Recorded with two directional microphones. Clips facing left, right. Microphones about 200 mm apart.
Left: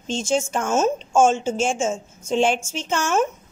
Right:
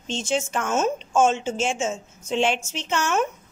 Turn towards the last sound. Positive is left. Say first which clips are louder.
# left 2 dB
turn(degrees=45)  # may be behind; listen again after turning